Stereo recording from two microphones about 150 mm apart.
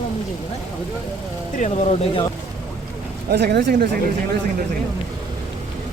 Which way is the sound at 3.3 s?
90° right.